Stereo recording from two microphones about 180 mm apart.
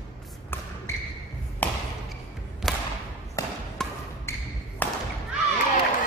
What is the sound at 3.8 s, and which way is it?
Wood block, centre (ahead or behind).